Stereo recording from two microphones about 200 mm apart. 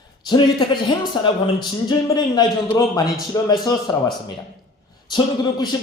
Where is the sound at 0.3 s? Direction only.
20° left (ahead or behind).